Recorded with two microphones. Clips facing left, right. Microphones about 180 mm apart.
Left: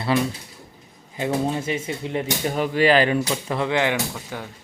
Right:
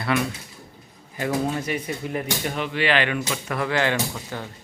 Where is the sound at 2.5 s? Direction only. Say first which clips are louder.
Left 6 dB; 40° left (ahead or behind).